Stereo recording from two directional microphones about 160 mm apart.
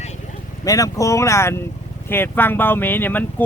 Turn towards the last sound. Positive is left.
turn(degrees=10)  # may be behind; listen again after turning